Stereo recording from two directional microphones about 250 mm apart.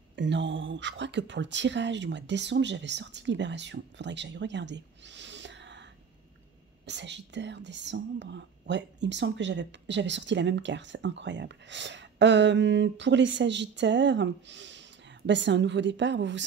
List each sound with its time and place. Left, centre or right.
0.1 s speech: right
6.9 s speech: right